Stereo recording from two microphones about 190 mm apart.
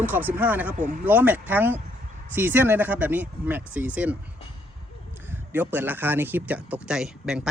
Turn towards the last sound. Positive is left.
turn(degrees=-5)  # may be behind; listen again after turning